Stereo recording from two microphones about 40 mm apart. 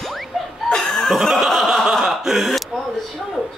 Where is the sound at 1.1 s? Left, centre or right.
Centre.